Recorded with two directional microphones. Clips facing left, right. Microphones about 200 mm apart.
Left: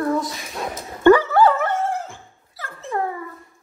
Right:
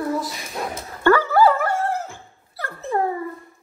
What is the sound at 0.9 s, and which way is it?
Dog, 20° left (ahead or behind).